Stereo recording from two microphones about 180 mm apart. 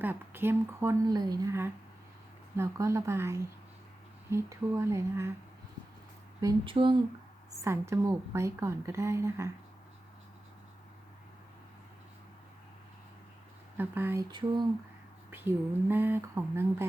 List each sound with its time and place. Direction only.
0.0 s a woman's voice: 10° right (ahead or behind)
6.7 s speech: 30° right (ahead or behind)
7.6 s a woman's voice: 15° right (ahead or behind)
13.7 s a woman's voice: 10° right (ahead or behind)
15.3 s a woman's voice: 10° right (ahead or behind)